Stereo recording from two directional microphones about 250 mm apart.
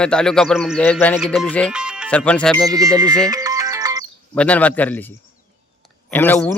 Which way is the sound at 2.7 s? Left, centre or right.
Centre.